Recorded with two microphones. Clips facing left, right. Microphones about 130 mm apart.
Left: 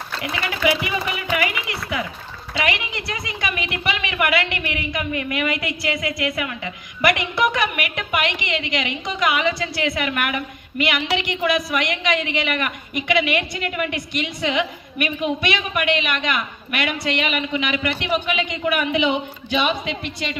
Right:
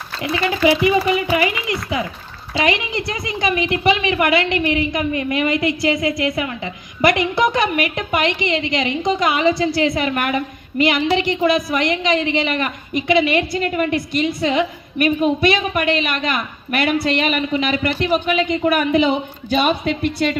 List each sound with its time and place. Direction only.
0.2 s a woman's voice: 30° right (ahead or behind); by 20.3 s 45° right (ahead or behind)